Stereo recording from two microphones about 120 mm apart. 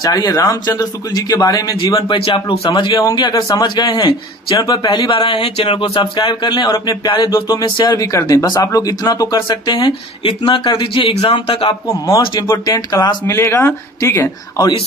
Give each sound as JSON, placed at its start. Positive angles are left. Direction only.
{"t": 0.0, "sound": "speech", "side_deg": 30}
{"t": 2.1, "sound": "speech", "side_deg": 45}
{"t": 2.9, "sound": "speech", "side_deg": 30}
{"t": 11.0, "sound": "speech", "side_deg": 55}
{"t": 12.1, "sound": "speech", "side_deg": 30}
{"t": 13.3, "sound": "speech", "side_deg": 25}